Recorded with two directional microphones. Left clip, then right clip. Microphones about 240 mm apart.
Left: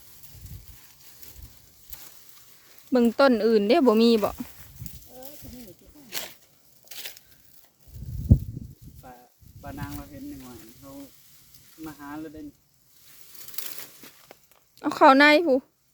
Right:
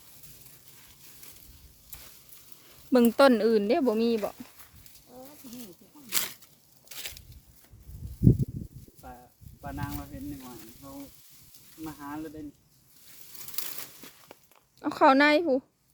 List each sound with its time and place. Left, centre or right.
2.9 s speech: centre; by 4.2 s left
5.5 s snake: right
6.8 s a sound: centre
9.6 s a sound: centre
11.8 s speech: centre
14.0 s walk: centre
14.8 s a woman's voice: left